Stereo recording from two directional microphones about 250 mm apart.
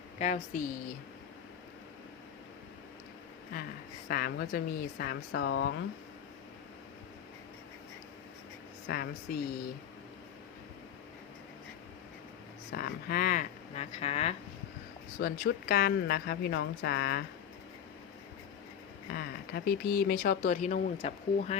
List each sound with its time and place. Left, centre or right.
0.2 s speech: left
4.1 s speech: left
8.9 s speech: left
12.7 s speech: left
15.2 s speech: left
19.1 s speech: left